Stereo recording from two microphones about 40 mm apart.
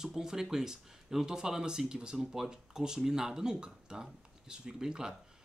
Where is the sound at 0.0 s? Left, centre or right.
Centre.